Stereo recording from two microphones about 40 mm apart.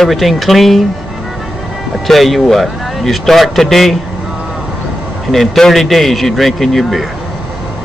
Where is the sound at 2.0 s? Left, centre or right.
Centre.